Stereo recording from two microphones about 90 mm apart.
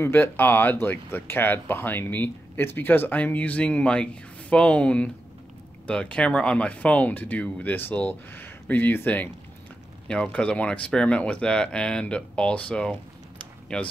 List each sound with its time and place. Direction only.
0.0 s speech: 25° left (ahead or behind)